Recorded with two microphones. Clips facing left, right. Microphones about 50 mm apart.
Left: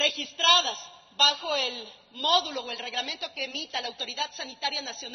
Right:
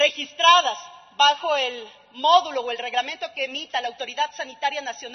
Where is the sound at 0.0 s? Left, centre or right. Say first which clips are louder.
Right 8 dB; right.